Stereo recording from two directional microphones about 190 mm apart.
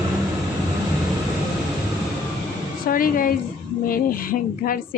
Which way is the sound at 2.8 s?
50° left (ahead or behind).